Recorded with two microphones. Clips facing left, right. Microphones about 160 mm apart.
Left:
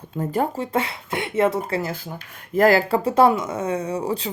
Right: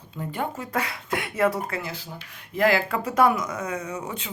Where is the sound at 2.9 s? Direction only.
30° left (ahead or behind).